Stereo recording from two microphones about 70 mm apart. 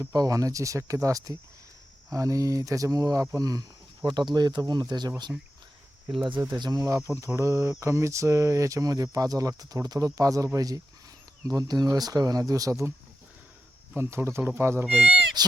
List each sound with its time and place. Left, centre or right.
0.1 s speech: right
6.6 s speech: right
7.3 s speech: right
13.9 s speech: right
14.8 s speech: centre